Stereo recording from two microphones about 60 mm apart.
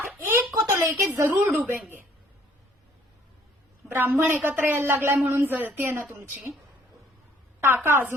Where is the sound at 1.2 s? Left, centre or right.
Right.